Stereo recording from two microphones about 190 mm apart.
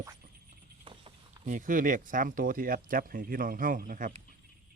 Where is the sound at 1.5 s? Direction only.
45° right (ahead or behind).